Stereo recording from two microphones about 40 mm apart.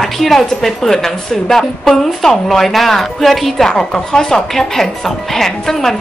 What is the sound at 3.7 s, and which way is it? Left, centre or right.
A woman's voice, centre.